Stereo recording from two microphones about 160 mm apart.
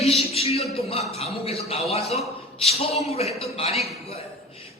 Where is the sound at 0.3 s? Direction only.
40° left (ahead or behind).